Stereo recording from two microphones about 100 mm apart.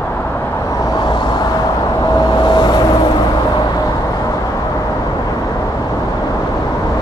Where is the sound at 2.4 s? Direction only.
50° left (ahead or behind).